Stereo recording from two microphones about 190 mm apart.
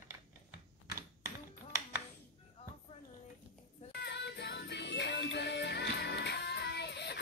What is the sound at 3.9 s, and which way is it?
Music, 60° left (ahead or behind).